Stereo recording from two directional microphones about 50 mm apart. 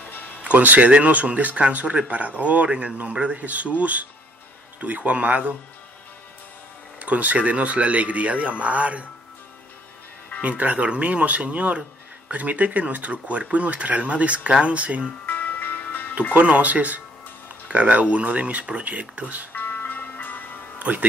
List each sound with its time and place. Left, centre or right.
0.4 s speech: right
7.0 s speech: right
10.4 s speech: right
15.2 s music: left
16.3 s speech: right
19.5 s music: left
20.9 s speech: right